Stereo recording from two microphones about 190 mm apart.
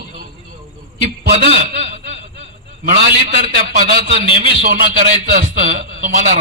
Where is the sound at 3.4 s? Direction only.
55° right (ahead or behind).